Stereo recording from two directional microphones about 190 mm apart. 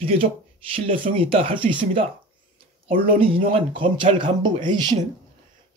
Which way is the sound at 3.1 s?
30° right (ahead or behind).